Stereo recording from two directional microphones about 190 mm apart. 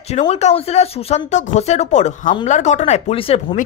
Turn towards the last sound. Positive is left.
turn(degrees=30)  # may be behind; listen again after turning